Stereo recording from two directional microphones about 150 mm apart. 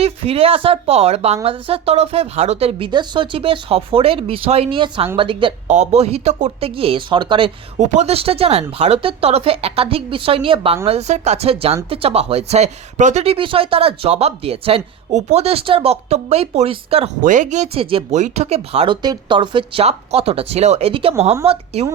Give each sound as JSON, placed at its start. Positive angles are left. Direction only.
{"t": 0.0, "sound": "speech", "side_deg": -40}
{"t": 5.6, "sound": "speech", "side_deg": -50}
{"t": 7.8, "sound": "speech", "side_deg": -45}
{"t": 17.2, "sound": "speech", "side_deg": -60}
{"t": 19.0, "sound": "speech", "side_deg": -30}